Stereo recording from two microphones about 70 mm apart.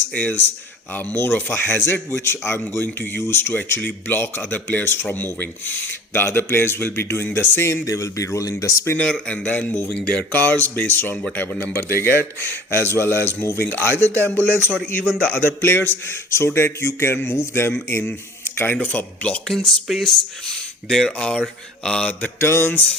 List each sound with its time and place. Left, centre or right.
0.1 s speech: centre
0.9 s a man's voice: left
7.9 s speech: left
9.0 s a man's voice: centre
19.5 s speech: centre
22.4 s a man's voice: left